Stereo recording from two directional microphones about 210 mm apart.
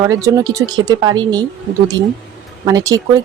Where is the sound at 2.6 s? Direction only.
15° right (ahead or behind).